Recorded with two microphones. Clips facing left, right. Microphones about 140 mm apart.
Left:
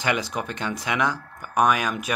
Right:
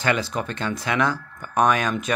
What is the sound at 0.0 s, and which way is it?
Speech, 15° left (ahead or behind).